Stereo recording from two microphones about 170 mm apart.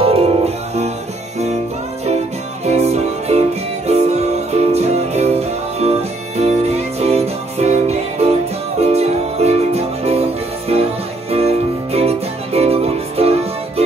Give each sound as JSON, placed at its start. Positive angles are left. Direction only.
{"t": 0.0, "sound": "music", "side_deg": -35}
{"t": 2.6, "sound": "music", "side_deg": -40}